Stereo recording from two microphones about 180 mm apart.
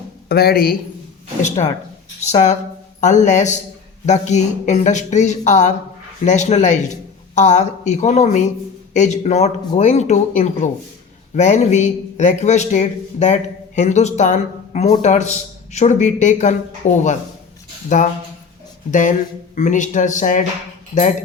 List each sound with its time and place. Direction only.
0.3 s speech: 60° left (ahead or behind)
1.4 s speech: 40° left (ahead or behind)